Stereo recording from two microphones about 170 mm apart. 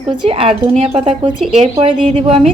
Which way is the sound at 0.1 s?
30° right (ahead or behind).